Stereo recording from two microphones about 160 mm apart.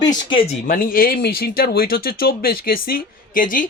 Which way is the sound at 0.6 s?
60° left (ahead or behind).